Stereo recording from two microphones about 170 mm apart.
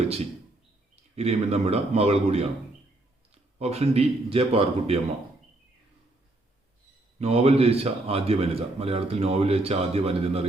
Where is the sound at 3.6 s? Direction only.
40° right (ahead or behind).